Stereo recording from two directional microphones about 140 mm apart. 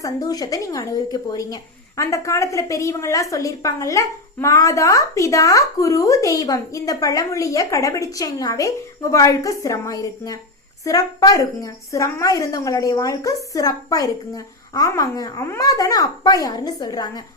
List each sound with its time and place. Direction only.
0.0 s a woman's voice: 25° left (ahead or behind)